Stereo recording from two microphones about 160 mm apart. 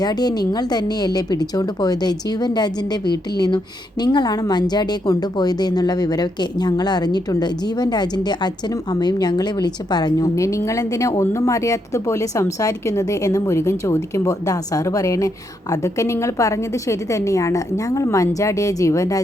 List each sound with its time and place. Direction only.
0.0 s speech: 25° left (ahead or behind)